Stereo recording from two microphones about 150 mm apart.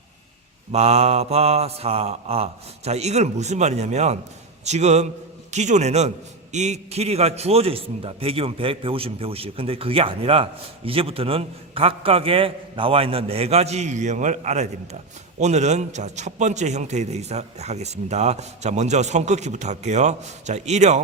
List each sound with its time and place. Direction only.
0.7 s a man's voice: 45° right (ahead or behind)